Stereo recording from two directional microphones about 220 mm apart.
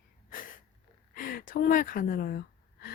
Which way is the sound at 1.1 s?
40° left (ahead or behind).